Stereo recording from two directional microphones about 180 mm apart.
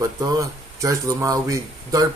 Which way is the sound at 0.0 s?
20° right (ahead or behind).